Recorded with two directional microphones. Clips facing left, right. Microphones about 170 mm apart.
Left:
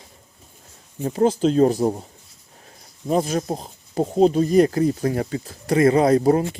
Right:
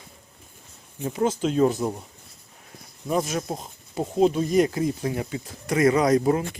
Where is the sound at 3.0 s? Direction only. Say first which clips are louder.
Left 4 dB; 30° left (ahead or behind).